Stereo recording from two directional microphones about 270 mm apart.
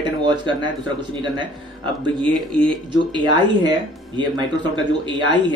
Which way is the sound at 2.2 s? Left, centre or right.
Centre.